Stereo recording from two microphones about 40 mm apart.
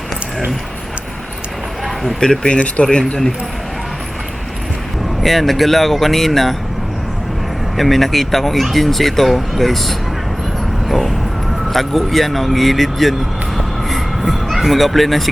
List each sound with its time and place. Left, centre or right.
2.2 s speech: centre
2.8 s speech: left
5.2 s speech: centre
7.8 s speech: centre
13.6 s a sound: centre